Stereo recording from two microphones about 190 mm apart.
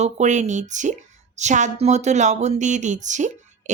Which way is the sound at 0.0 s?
40° right (ahead or behind).